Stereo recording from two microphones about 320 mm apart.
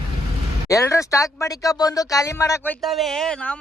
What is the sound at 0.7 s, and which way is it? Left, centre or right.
Speech, centre.